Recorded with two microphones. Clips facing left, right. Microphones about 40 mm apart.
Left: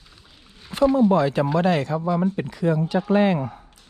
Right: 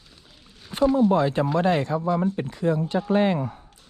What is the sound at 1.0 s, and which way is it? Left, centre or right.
Speech, left.